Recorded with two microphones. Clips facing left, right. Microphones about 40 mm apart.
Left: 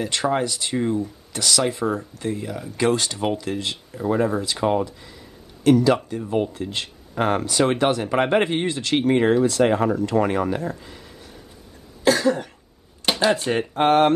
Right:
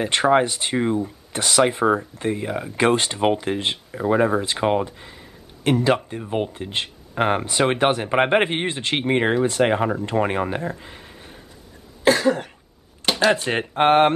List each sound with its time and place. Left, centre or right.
0.0 s speech: right
12.2 s cough: centre
13.0 s a sound: centre
13.5 s speech: right